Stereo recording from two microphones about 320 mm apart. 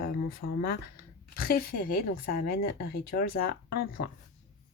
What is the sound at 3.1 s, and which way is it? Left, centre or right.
Speech, left.